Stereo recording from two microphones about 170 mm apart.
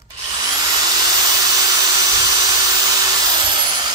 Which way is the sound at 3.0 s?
25° right (ahead or behind).